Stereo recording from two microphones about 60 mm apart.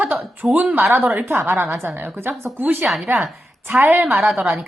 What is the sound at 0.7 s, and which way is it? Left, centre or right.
A woman's voice, right.